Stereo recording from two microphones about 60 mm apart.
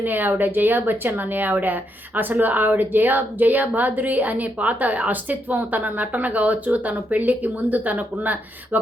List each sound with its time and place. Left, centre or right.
0.0 s a woman's voice: right